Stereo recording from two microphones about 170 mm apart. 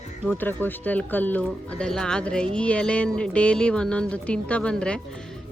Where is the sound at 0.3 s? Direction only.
10° left (ahead or behind).